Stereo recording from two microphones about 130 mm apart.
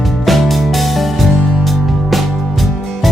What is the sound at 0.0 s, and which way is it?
Music, centre (ahead or behind).